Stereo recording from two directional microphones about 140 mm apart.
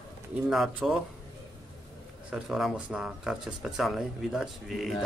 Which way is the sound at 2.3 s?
5° right (ahead or behind).